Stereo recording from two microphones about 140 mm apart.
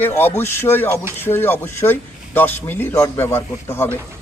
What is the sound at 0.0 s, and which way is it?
Speech, 15° left (ahead or behind).